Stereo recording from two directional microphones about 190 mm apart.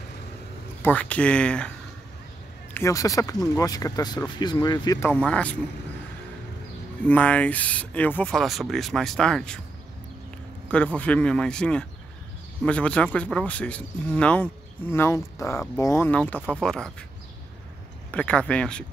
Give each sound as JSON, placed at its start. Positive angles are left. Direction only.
{"t": 0.8, "sound": "speech", "side_deg": 5}
{"t": 2.7, "sound": "speech", "side_deg": 15}
{"t": 5.1, "sound": "speech", "side_deg": 5}
{"t": 7.1, "sound": "speech", "side_deg": 5}
{"t": 10.7, "sound": "speech", "side_deg": 5}
{"t": 18.1, "sound": "speech", "side_deg": 5}